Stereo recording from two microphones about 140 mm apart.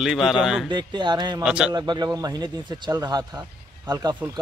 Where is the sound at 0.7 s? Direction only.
35° right (ahead or behind).